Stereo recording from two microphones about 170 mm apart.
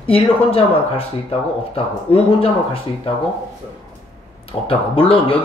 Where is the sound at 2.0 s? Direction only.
35° left (ahead or behind).